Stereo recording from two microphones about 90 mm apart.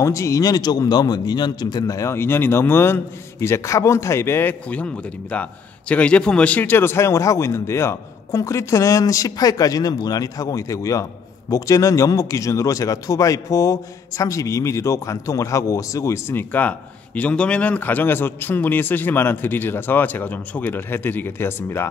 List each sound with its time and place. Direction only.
0.0 s a man's voice: 35° left (ahead or behind)